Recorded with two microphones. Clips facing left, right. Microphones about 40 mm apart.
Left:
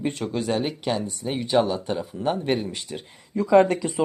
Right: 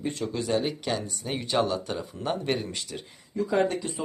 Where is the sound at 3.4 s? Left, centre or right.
Left.